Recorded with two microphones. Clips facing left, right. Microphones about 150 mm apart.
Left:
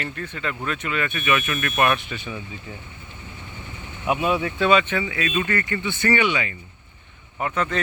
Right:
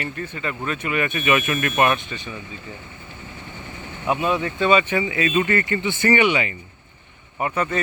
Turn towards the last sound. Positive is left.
turn(degrees=-10)  # may be behind; listen again after turning